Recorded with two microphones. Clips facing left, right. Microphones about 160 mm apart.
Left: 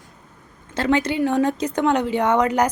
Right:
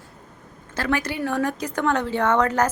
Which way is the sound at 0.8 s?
20° left (ahead or behind).